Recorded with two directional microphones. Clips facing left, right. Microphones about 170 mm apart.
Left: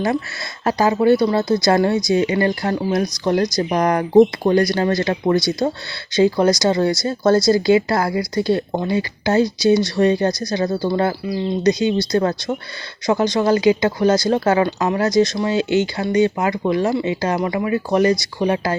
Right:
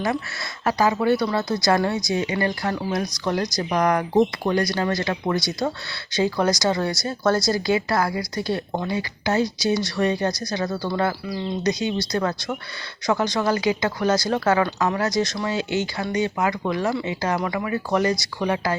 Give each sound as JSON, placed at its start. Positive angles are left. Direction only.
{"t": 0.6, "sound": "speech", "side_deg": 30}